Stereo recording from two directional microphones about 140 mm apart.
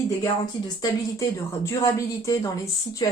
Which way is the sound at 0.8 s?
25° left (ahead or behind).